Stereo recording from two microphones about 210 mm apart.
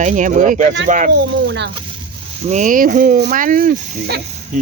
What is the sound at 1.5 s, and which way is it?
Speech, 55° right (ahead or behind).